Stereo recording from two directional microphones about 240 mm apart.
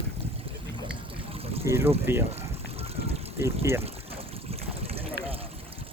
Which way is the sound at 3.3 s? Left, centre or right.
Centre.